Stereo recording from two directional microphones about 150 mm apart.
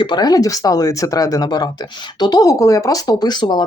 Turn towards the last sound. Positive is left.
turn(degrees=30)  # may be behind; listen again after turning